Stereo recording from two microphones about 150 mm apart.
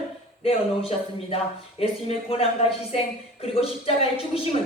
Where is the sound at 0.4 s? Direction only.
40° left (ahead or behind).